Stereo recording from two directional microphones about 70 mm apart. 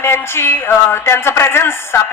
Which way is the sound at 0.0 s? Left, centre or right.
Left.